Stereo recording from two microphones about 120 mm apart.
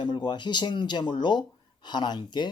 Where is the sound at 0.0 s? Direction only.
40° left (ahead or behind).